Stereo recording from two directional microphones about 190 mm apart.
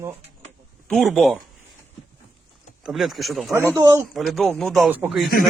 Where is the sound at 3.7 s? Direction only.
15° right (ahead or behind).